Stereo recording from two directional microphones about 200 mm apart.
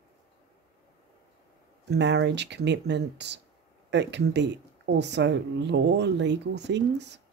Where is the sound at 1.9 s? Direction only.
60° right (ahead or behind).